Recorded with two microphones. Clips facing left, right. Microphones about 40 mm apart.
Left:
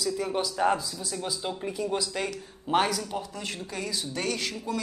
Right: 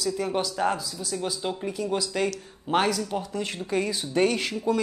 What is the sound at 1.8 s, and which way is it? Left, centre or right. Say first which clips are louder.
Speech: right 1 dB; centre.